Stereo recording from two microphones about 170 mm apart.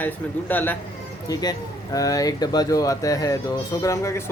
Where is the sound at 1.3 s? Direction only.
20° left (ahead or behind).